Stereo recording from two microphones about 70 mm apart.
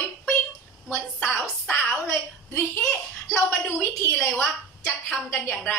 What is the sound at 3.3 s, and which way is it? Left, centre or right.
Speech, left.